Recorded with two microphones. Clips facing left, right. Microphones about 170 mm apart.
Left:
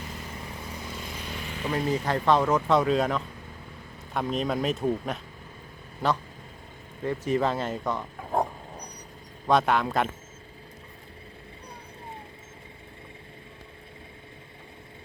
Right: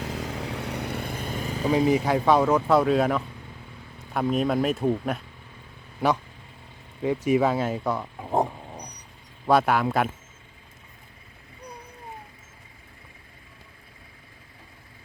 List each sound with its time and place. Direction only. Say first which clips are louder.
0.0 s vehicle: right 7 dB; 90° right; by 1.7 s 40° right (ahead or behind)
1.7 s speech: right 5 dB; 15° right (ahead or behind)
7.0 s speech: right 4 dB; 10° right (ahead or behind)
9.5 s speech: right 2 dB; 5° right (ahead or behind)